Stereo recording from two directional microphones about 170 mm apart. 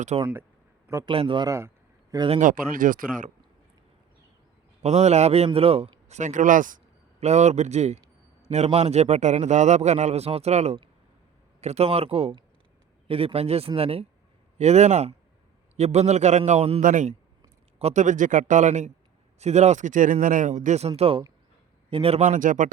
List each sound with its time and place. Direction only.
0.1 s a man's voice: 35° right (ahead or behind)
0.9 s a man's voice: 20° right (ahead or behind)
1.1 s speech: 30° right (ahead or behind)
1.5 s a sound: 15° right (ahead or behind)
2.4 s speech: 50° right (ahead or behind)
4.8 s a man's voice: 40° right (ahead or behind)
16.8 s speech: 50° right (ahead or behind)